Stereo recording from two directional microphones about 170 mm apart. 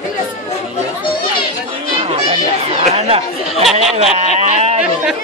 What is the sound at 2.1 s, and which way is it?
Chatter, 35° right (ahead or behind).